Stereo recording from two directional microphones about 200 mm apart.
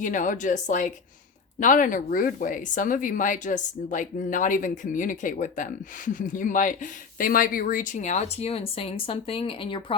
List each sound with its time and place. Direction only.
0.0 s speech: 40° left (ahead or behind)